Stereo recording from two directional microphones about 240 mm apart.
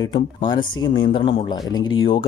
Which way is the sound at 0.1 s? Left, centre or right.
Centre.